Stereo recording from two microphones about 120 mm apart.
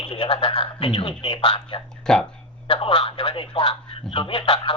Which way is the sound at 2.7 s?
45° left (ahead or behind).